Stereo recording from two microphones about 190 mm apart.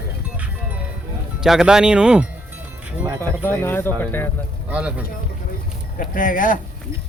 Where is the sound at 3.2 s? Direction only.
10° left (ahead or behind).